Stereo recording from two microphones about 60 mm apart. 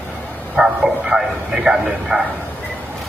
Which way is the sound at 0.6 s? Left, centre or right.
Centre.